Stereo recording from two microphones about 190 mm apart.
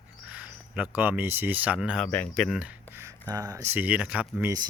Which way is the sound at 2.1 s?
10° left (ahead or behind).